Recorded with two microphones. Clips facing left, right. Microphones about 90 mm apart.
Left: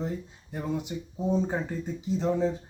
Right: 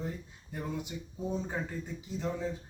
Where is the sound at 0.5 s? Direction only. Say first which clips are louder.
Left 6 dB; 30° left (ahead or behind).